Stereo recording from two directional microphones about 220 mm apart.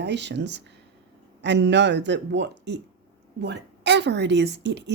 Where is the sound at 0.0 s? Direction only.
50° right (ahead or behind).